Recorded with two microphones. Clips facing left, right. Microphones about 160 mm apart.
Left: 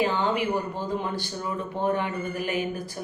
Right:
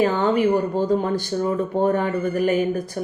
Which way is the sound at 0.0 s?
45° right (ahead or behind).